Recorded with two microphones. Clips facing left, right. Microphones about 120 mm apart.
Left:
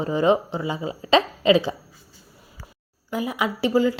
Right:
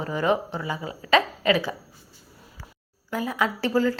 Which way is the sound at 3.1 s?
15° left (ahead or behind).